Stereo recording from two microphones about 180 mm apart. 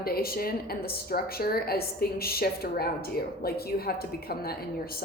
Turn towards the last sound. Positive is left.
turn(degrees=55)  # may be behind; listen again after turning